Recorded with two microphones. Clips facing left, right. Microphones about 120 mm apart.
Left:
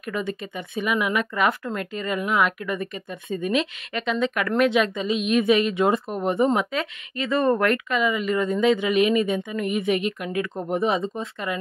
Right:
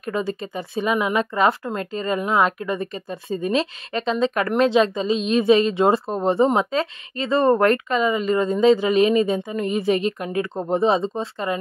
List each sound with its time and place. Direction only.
0.0 s a woman's voice: 30° right (ahead or behind)